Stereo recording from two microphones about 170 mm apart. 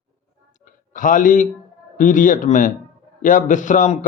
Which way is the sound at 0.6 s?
50° left (ahead or behind).